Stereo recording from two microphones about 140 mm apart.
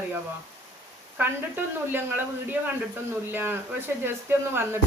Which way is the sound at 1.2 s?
15° right (ahead or behind).